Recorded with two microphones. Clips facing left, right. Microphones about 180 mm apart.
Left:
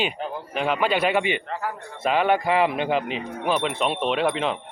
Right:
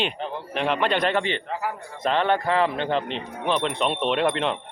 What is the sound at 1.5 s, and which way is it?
Speech, 5° right (ahead or behind).